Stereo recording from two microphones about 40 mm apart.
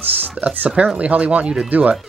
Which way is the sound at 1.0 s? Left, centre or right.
Right.